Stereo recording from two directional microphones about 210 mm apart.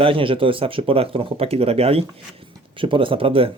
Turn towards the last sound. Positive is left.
turn(degrees=-25)  # may be behind; listen again after turning